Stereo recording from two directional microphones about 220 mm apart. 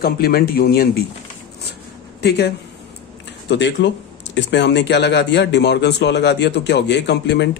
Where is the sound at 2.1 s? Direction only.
50° left (ahead or behind).